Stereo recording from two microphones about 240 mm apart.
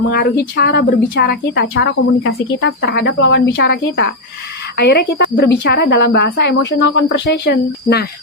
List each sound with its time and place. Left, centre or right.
0.1 s a woman's voice: left